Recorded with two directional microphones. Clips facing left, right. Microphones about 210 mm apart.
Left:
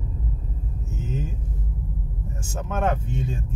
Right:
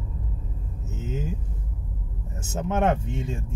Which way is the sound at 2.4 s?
20° right (ahead or behind).